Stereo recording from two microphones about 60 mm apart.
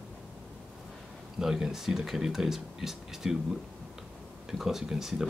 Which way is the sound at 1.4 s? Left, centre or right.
Centre.